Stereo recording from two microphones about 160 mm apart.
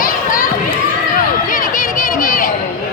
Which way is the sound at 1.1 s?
60° left (ahead or behind).